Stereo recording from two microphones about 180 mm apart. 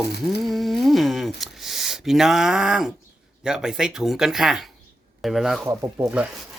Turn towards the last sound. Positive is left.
turn(degrees=-20)  # may be behind; listen again after turning